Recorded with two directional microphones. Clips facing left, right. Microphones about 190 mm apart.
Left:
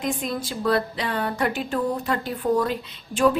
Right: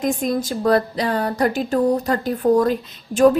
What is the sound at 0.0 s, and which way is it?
Speech, 45° right (ahead or behind).